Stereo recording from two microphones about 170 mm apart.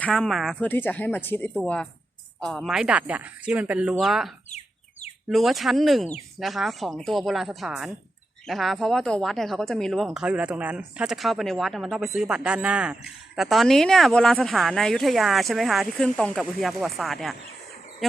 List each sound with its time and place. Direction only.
0.0 s speech: 5° left (ahead or behind)
0.7 s speech: 10° left (ahead or behind)
4.5 s a sound: 40° left (ahead or behind)
5.3 s speech: centre (ahead or behind)